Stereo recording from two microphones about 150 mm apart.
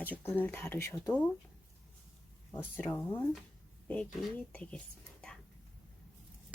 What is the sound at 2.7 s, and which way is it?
Speech, 10° left (ahead or behind).